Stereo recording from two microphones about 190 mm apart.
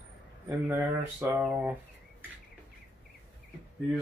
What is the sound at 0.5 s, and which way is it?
Speech, 10° right (ahead or behind).